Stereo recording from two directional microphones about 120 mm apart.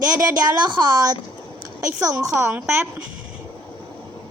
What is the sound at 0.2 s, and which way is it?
A woman's voice, 35° right (ahead or behind).